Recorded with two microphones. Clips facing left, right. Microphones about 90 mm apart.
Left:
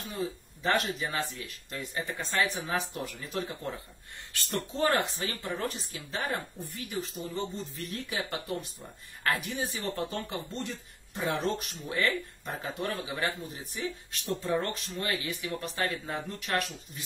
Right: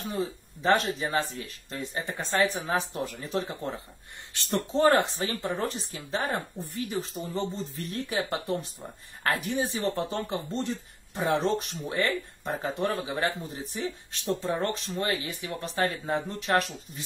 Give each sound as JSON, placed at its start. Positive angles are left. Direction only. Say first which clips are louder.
{"t": 0.1, "sound": "a woman's voice", "louder": "right 2 dB", "side_deg": -30}